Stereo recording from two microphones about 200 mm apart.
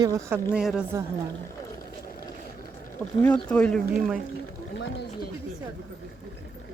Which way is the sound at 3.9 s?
5° right (ahead or behind).